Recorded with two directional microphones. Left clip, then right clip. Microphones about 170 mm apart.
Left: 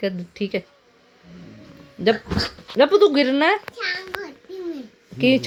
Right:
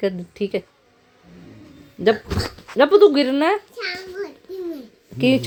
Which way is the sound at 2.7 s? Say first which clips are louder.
Right 2 dB; 10° right (ahead or behind).